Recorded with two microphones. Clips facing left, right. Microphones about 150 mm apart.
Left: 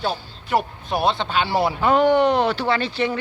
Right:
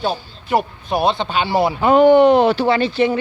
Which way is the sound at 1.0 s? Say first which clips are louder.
Right 2 dB; centre (ahead or behind).